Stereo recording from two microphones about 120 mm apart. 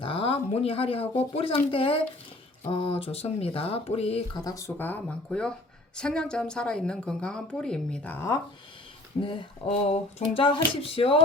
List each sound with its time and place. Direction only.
0.0 s speech: 50° left (ahead or behind)
4.4 s speech: 30° left (ahead or behind)
4.8 s a woman's voice: 10° left (ahead or behind)
9.2 s speech: 50° left (ahead or behind)